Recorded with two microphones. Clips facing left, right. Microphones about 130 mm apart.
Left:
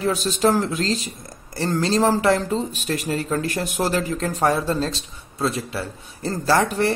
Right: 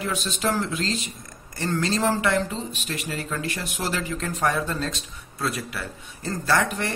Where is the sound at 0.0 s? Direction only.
35° left (ahead or behind).